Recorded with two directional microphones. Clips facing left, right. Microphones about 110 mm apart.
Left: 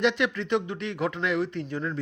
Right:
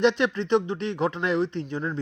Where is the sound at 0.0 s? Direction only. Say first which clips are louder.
Right 3 dB; 30° right (ahead or behind).